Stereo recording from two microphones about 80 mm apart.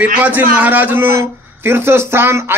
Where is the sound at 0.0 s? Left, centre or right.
Right.